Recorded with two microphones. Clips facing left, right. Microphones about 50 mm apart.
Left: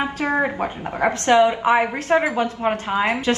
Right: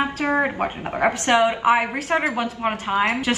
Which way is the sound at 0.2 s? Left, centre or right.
Right.